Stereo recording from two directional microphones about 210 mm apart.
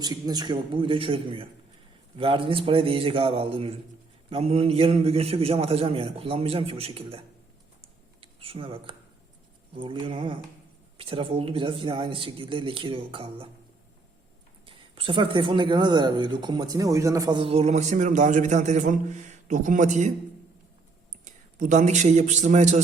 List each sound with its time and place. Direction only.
0.0 s speech: 20° right (ahead or behind)
14.7 s speech: 25° right (ahead or behind)
21.2 s a man's voice: 35° right (ahead or behind)